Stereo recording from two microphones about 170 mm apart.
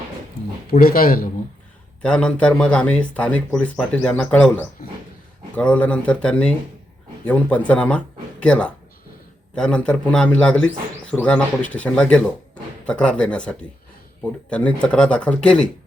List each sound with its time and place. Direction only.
0.4 s a sound: 70° left (ahead or behind)
0.7 s speech: 60° left (ahead or behind)
2.0 s a man's voice: 5° left (ahead or behind)